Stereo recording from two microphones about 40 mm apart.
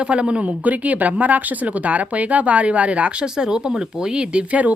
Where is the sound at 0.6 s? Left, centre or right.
Right.